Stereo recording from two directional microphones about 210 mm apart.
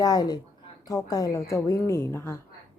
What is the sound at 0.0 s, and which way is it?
Speech, 15° left (ahead or behind).